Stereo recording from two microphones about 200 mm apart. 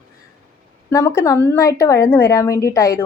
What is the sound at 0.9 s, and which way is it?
Speech, 15° left (ahead or behind).